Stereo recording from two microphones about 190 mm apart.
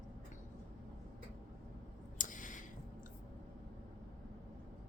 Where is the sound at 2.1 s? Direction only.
45° left (ahead or behind).